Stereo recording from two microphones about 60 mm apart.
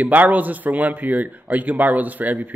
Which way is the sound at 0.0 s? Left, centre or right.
Right.